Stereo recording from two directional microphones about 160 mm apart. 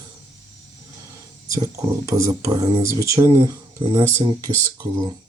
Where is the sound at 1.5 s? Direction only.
20° right (ahead or behind).